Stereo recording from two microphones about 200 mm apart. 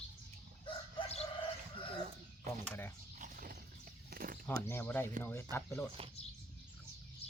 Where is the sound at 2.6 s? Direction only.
10° left (ahead or behind).